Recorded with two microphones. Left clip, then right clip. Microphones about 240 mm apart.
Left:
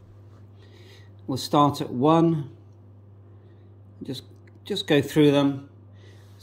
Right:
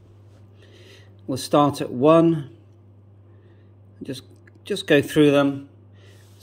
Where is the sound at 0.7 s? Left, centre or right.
Centre.